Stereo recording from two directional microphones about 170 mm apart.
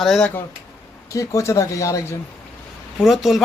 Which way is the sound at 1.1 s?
20° left (ahead or behind).